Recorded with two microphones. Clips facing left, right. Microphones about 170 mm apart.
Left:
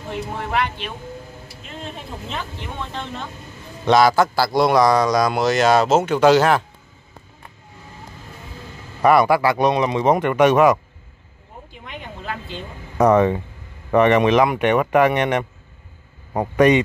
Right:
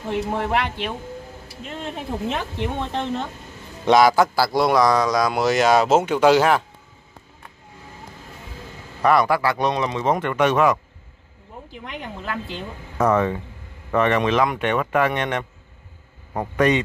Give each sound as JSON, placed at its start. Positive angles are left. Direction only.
{"t": 0.1, "sound": "speech", "side_deg": -65}
{"t": 3.8, "sound": "a man's voice", "side_deg": -15}
{"t": 9.0, "sound": "speech", "side_deg": 10}
{"t": 12.9, "sound": "speech", "side_deg": 20}